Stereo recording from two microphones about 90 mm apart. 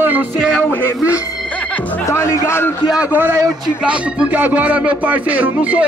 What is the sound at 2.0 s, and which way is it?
Speech, 35° left (ahead or behind).